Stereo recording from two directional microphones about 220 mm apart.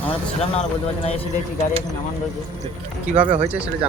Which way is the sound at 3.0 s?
5° right (ahead or behind).